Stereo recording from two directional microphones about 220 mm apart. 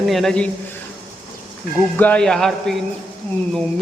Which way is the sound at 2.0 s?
5° left (ahead or behind).